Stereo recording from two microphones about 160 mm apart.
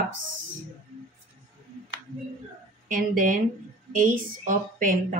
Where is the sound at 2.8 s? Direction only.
55° right (ahead or behind).